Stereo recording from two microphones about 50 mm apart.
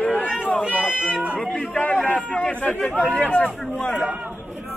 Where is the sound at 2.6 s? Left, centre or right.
Left.